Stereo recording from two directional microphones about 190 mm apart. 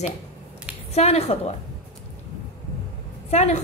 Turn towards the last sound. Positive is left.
turn(degrees=35)  # may be behind; listen again after turning